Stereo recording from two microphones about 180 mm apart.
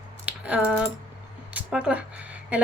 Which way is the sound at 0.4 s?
5° right (ahead or behind).